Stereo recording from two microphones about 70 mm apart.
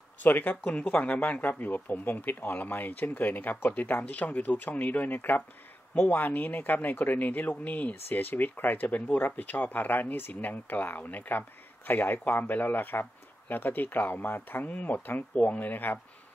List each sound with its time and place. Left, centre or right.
0.2 s speech: left